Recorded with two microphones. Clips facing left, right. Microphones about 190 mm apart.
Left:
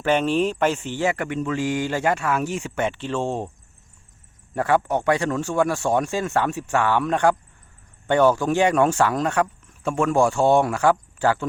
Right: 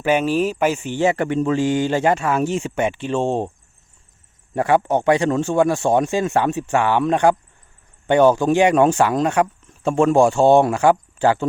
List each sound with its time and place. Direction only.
0.0 s speech: 10° right (ahead or behind); by 3.5 s 25° right (ahead or behind)
4.5 s speech: 20° right (ahead or behind)